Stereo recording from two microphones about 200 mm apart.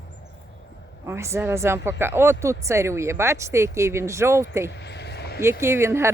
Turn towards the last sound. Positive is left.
turn(degrees=-10)  # may be behind; listen again after turning